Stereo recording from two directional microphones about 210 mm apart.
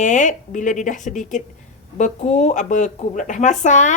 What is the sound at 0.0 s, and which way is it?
Speech, 35° left (ahead or behind).